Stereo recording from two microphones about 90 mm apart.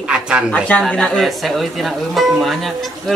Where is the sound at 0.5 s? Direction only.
15° left (ahead or behind).